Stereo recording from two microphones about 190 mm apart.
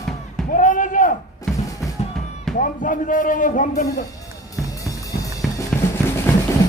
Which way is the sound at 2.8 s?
45° left (ahead or behind).